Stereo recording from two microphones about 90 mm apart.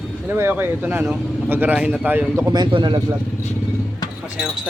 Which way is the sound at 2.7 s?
65° right (ahead or behind).